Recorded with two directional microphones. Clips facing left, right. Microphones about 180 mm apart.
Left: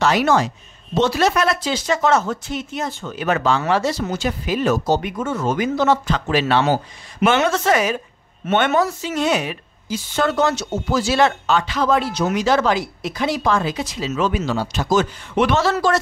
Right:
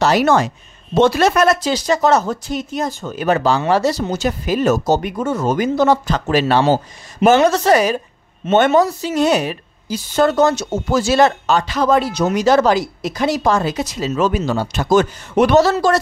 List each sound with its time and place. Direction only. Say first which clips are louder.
0.0 s speech: right 3 dB; 40° right (ahead or behind)
0.9 s speech: right 4 dB; 50° right (ahead or behind)
14.5 s speech: right 4 dB; 55° right (ahead or behind)